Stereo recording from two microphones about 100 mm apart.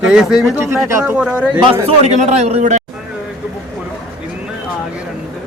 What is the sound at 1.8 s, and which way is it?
Speech, 90° right.